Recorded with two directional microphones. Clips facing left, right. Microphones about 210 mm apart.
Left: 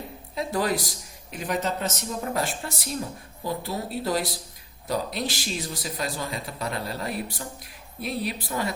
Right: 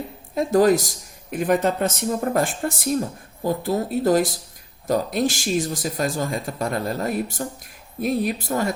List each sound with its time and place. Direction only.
0.3 s a man's voice: 45° right (ahead or behind)